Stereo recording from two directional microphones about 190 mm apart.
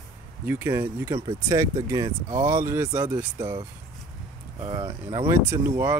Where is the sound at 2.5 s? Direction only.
15° right (ahead or behind).